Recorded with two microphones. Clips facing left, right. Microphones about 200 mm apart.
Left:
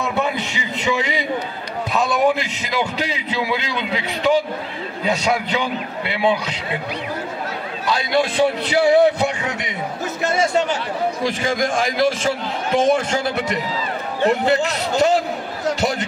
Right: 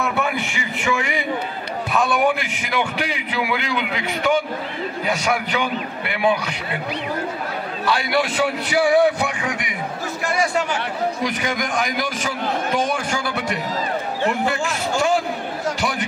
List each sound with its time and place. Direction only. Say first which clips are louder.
0.0 s a man's voice: left 1 dB; 20° left (ahead or behind)
3.1 s speech: left 1 dB; 20° left (ahead or behind)
7.9 s speech: left 2 dB; 20° left (ahead or behind)